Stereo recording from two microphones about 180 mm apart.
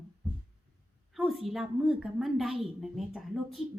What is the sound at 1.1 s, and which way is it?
A woman's voice, centre (ahead or behind).